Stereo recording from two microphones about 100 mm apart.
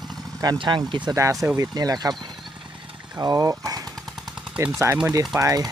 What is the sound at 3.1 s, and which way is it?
Speech, 35° right (ahead or behind).